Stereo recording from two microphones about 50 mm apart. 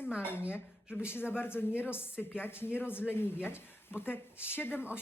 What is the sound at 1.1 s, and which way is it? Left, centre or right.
Speech, left.